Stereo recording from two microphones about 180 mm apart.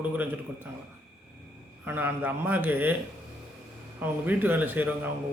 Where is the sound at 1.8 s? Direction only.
10° right (ahead or behind).